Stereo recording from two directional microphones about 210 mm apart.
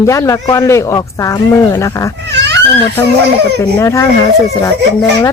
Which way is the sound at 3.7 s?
15° left (ahead or behind).